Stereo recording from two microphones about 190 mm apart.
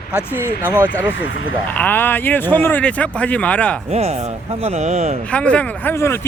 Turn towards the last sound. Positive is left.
turn(degrees=15)  # may be behind; listen again after turning